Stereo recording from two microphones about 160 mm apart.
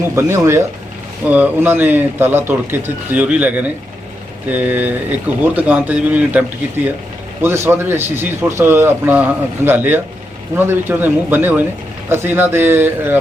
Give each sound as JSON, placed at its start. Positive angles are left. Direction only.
{"t": 0.2, "sound": "a man's voice", "side_deg": -15}
{"t": 7.4, "sound": "a man's voice", "side_deg": -15}